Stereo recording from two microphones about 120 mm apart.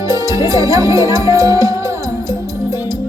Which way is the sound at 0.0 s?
30° right (ahead or behind).